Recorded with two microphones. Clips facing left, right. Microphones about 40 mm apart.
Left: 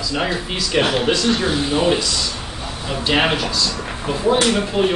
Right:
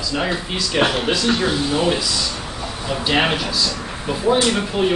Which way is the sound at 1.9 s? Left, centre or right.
Centre.